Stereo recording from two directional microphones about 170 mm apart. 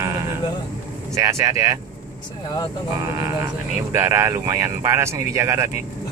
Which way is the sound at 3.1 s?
15° right (ahead or behind).